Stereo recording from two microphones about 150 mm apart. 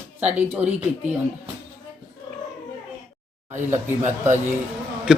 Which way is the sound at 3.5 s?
15° right (ahead or behind).